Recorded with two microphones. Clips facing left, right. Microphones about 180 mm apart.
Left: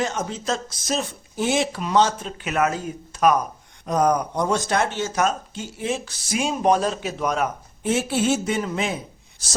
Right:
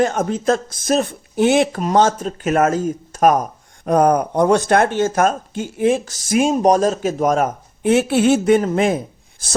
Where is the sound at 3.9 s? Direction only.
55° right (ahead or behind).